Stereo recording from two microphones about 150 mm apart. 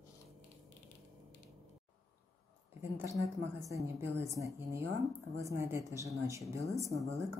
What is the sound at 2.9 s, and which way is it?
Speech, 15° right (ahead or behind).